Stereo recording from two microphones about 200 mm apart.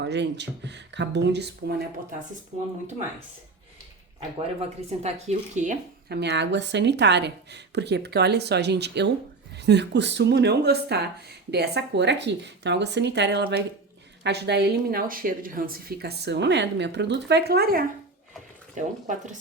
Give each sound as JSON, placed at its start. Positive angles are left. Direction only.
{"t": 0.0, "sound": "speech", "side_deg": -60}
{"t": 4.2, "sound": "speech", "side_deg": -30}
{"t": 6.1, "sound": "speech", "side_deg": -55}
{"t": 18.7, "sound": "speech", "side_deg": -40}